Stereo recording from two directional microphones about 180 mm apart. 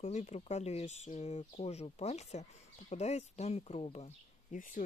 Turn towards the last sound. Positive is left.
turn(degrees=50)  # may be behind; listen again after turning